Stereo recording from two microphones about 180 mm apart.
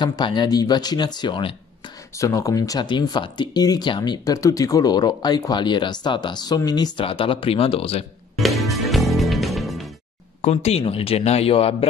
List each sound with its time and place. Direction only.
0.0 s speech: 25° left (ahead or behind)
8.4 s music: centre (ahead or behind)
10.4 s a man's voice: 35° left (ahead or behind)